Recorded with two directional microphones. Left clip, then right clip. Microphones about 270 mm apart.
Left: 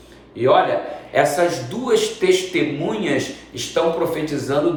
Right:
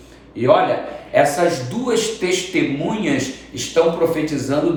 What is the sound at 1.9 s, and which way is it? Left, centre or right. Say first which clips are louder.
A man's voice: left 3 dB; centre.